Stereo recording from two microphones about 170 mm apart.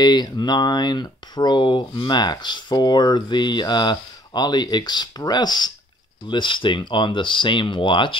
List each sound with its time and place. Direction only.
0.0 s speech: 25° left (ahead or behind)